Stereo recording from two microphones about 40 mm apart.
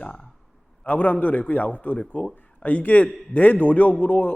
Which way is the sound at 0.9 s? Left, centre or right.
Left.